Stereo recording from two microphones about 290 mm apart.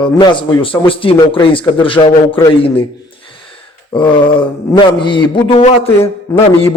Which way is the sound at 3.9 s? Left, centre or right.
Centre.